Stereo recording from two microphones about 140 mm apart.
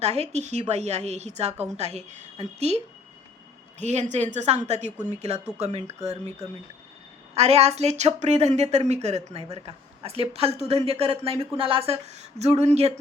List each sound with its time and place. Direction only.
0.0 s a woman's voice: 50° right (ahead or behind)